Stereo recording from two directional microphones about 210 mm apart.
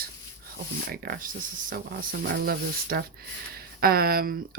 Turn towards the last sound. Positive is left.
turn(degrees=-45)  # may be behind; listen again after turning